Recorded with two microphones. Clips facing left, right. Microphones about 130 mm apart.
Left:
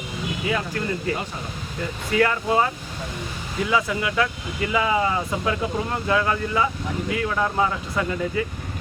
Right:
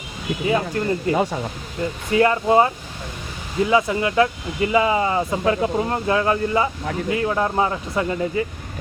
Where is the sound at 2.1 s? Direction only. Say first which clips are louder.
Right 4 dB; 30° right (ahead or behind).